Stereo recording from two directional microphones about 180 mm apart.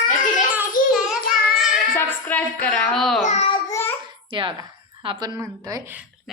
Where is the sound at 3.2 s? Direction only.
35° left (ahead or behind).